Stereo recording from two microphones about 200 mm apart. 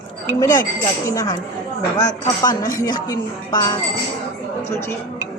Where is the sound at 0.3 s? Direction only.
15° left (ahead or behind).